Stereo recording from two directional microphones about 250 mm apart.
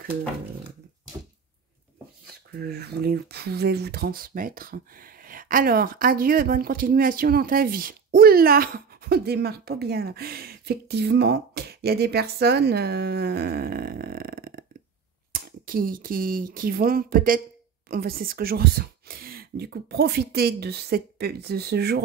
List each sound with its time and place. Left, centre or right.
2.6 s speech: right